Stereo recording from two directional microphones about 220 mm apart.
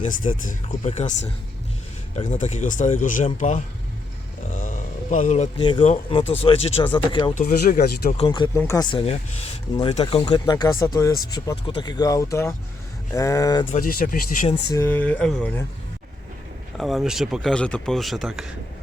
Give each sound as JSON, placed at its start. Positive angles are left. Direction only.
{"t": 0.0, "sound": "speech", "side_deg": 35}
{"t": 7.3, "sound": "speech", "side_deg": 40}
{"t": 8.1, "sound": "speech", "side_deg": 25}
{"t": 13.7, "sound": "speech", "side_deg": 40}
{"t": 14.7, "sound": "speech", "side_deg": 10}
{"t": 16.7, "sound": "speech", "side_deg": 0}